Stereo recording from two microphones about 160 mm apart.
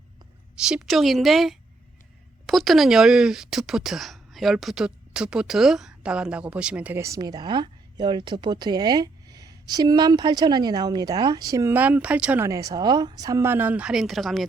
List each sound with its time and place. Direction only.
0.5 s a woman's voice: 5° right (ahead or behind)
12.5 s speech: 20° right (ahead or behind); by 14.4 s centre (ahead or behind)